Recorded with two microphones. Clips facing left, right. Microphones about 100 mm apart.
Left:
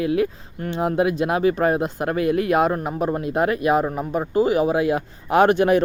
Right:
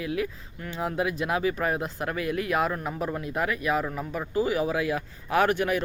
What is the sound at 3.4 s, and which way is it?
Speech, 60° left (ahead or behind).